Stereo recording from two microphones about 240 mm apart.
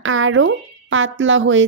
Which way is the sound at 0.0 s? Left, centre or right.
Right.